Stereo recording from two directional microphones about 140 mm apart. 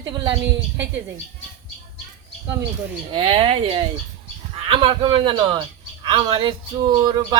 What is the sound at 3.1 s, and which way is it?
Speech, 40° right (ahead or behind).